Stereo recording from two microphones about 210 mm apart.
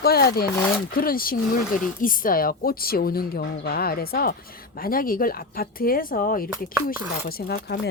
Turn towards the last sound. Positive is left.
turn(degrees=50)  # may be behind; listen again after turning